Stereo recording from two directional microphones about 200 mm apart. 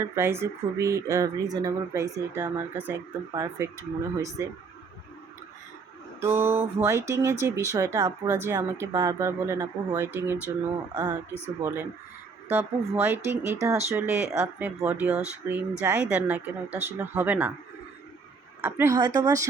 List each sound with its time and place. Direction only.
0.0 s speech: 10° right (ahead or behind)
6.1 s speech: 10° right (ahead or behind)
18.6 s speech: 15° right (ahead or behind)